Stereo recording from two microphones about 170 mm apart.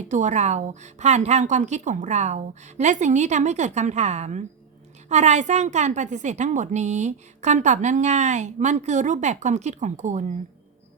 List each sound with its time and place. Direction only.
0.0 s a woman's voice: 45° right (ahead or behind)